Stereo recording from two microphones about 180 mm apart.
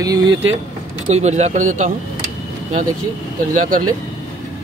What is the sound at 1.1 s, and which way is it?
Speech, 40° right (ahead or behind).